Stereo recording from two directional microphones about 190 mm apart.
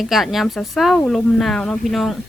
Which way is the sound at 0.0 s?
Centre (ahead or behind).